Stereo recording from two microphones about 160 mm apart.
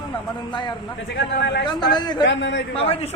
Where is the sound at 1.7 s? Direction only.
25° left (ahead or behind).